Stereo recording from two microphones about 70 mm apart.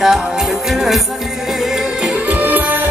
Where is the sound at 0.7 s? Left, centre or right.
Centre.